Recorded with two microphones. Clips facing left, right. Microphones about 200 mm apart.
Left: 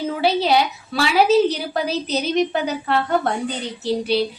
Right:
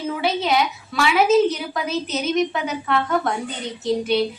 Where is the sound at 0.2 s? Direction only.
35° left (ahead or behind).